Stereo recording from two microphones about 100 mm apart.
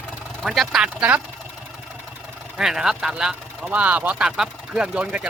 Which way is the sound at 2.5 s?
5° right (ahead or behind).